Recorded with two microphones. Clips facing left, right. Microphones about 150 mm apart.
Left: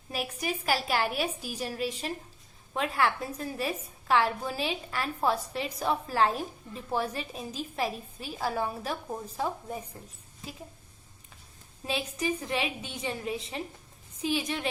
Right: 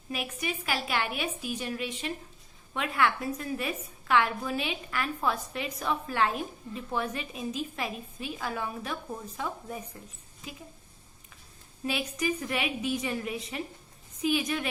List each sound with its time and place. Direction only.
0.1 s a woman's voice: 35° left (ahead or behind)
11.9 s a woman's voice: 30° left (ahead or behind)